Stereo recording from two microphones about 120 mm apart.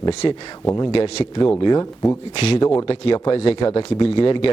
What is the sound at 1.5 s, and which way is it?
Speech, 30° left (ahead or behind).